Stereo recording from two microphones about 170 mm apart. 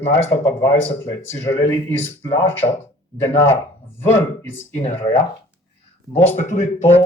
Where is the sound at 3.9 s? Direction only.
15° left (ahead or behind).